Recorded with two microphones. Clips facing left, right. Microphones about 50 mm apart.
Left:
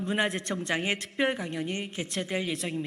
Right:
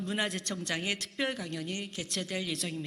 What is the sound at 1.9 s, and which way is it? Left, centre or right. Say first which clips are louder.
Speech: left 5 dB; left.